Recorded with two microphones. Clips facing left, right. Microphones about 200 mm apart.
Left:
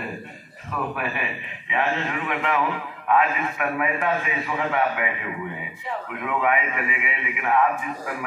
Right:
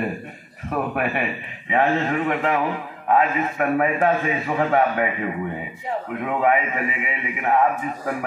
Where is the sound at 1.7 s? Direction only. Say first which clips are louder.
Right 5 dB; 45° right (ahead or behind).